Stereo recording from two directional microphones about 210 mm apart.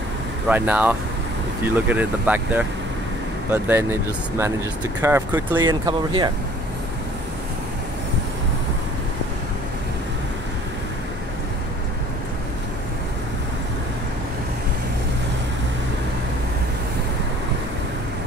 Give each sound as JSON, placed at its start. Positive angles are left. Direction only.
{"t": 0.5, "sound": "speech", "side_deg": -5}